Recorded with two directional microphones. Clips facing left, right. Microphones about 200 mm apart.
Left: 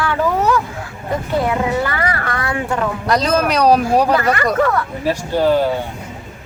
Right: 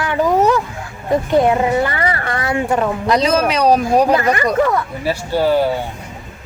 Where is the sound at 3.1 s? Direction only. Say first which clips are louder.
Even; 10° right (ahead or behind).